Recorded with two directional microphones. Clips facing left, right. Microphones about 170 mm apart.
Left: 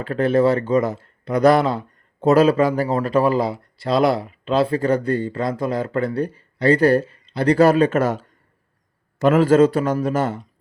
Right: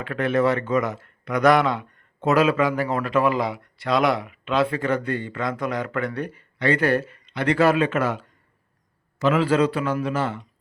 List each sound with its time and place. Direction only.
0.0 s a man's voice: 35° left (ahead or behind)